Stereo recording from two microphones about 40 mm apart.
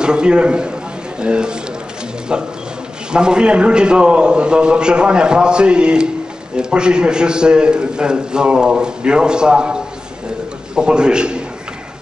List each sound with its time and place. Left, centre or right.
0.0 s a man's voice: right
3.1 s a man's voice: right